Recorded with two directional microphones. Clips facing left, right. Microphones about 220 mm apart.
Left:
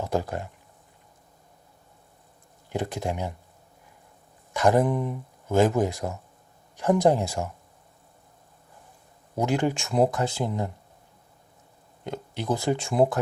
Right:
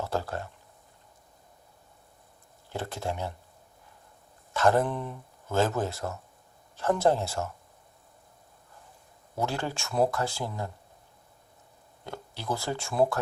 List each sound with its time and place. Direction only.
0.0 s speech: 15° left (ahead or behind)
2.6 s speech: 15° left (ahead or behind)
4.5 s speech: 15° left (ahead or behind)
9.3 s speech: 15° left (ahead or behind)
12.0 s speech: 20° left (ahead or behind)